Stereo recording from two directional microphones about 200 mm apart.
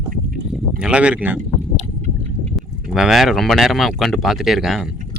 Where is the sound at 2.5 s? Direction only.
Centre (ahead or behind).